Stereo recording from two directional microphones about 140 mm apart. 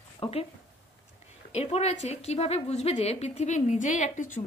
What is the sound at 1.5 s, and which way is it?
A woman's voice, 50° left (ahead or behind).